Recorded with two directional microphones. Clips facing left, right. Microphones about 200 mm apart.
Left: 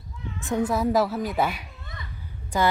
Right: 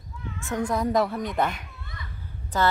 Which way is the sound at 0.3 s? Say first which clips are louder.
Left 4 dB; 15° left (ahead or behind).